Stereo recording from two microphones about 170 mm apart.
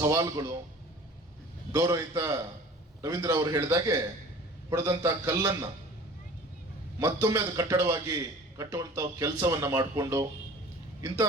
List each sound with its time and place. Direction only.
0.0 s a man's voice: 20° right (ahead or behind)
1.7 s a man's voice: 20° right (ahead or behind)
7.0 s a man's voice: 20° right (ahead or behind)